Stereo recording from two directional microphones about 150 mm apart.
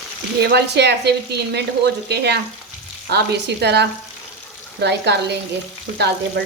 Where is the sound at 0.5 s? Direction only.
90° right.